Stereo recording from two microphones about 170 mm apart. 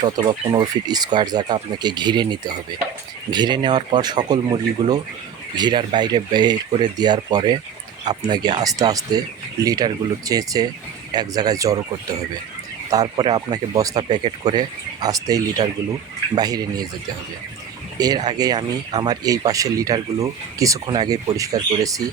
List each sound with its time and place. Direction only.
0.0 s speech: 25° right (ahead or behind)
18.0 s speech: 20° right (ahead or behind)